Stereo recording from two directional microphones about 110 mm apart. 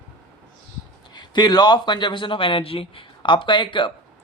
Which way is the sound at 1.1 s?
40° left (ahead or behind).